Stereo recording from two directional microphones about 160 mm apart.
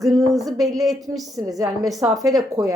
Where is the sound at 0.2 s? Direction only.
20° right (ahead or behind).